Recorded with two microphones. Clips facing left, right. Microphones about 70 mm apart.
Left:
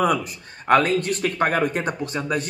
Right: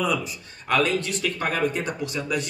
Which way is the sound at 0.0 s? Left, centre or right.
Left.